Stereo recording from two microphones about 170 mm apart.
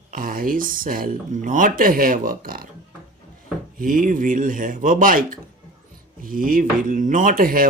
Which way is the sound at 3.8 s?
55° right (ahead or behind).